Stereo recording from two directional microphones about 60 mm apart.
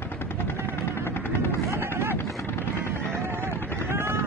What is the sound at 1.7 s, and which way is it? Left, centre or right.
Vehicle, right.